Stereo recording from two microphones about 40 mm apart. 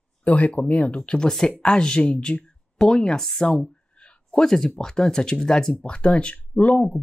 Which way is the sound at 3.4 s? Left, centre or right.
Centre.